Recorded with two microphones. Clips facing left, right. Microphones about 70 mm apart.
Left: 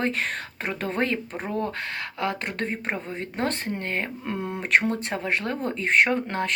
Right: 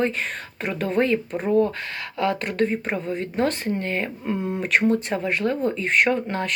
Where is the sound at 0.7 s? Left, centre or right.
Left.